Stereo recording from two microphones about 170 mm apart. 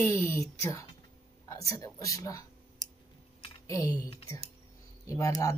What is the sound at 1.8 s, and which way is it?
Speech, 20° left (ahead or behind).